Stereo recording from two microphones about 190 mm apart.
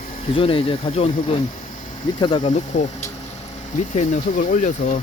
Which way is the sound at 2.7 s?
40° left (ahead or behind).